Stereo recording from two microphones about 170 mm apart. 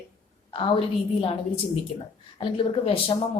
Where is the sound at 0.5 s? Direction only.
30° left (ahead or behind).